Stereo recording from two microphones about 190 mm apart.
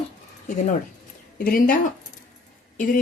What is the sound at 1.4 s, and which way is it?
Speech, 45° left (ahead or behind).